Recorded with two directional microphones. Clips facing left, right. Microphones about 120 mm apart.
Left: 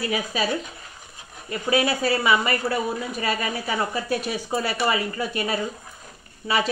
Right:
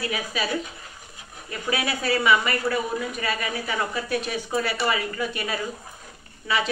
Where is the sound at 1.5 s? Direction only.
35° left (ahead or behind).